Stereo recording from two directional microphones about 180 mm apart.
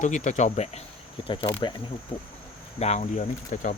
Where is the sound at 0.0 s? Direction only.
45° left (ahead or behind).